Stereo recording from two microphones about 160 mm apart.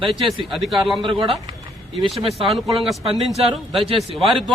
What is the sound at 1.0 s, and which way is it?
Speech, 30° right (ahead or behind).